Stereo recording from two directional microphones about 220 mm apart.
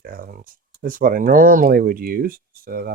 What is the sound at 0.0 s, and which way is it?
Speech, 40° right (ahead or behind).